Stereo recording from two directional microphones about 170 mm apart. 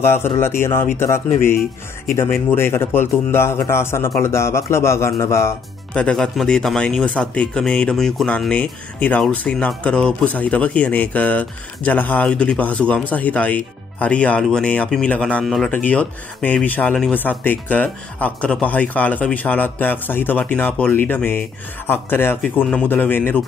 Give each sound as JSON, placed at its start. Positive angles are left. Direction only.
{"t": 0.4, "sound": "speech", "side_deg": 15}
{"t": 2.5, "sound": "speech", "side_deg": 15}